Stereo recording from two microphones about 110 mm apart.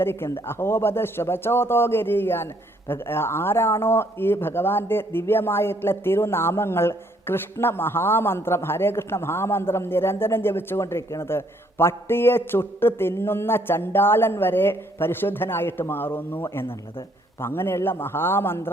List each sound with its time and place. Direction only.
0.0 s a man's voice: 20° left (ahead or behind)